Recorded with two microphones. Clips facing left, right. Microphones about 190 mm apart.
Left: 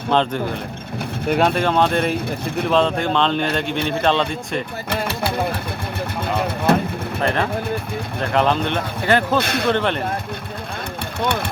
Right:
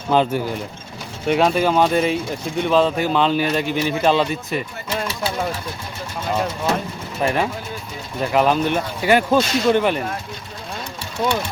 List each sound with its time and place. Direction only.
0.1 s speech: 5° right (ahead or behind)
5.0 s a sound: 60° left (ahead or behind)
6.7 s speech: 55° left (ahead or behind)
8.2 s speech: 5° right (ahead or behind)
9.4 s speech: 60° left (ahead or behind)
9.7 s speech: 5° right (ahead or behind)